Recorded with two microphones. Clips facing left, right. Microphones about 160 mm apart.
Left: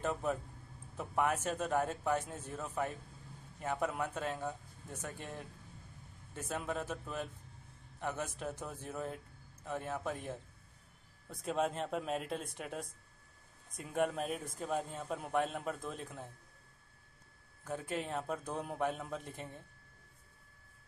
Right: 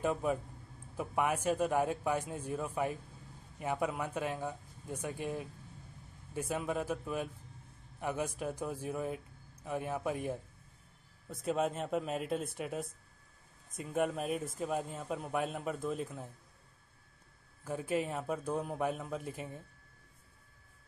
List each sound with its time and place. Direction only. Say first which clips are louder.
0.0 s a man's voice: right 3 dB; 10° right (ahead or behind)
17.6 s a man's voice: right 4 dB; 5° right (ahead or behind)